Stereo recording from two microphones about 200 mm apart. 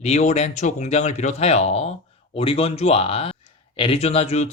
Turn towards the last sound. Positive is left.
turn(degrees=30)  # may be behind; listen again after turning